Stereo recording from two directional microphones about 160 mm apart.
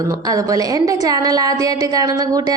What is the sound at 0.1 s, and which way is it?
A woman's voice, 20° right (ahead or behind).